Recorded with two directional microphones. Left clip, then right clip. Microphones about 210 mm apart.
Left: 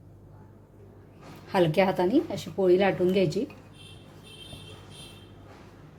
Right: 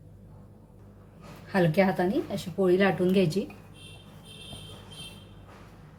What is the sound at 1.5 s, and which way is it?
A woman's voice, 25° left (ahead or behind).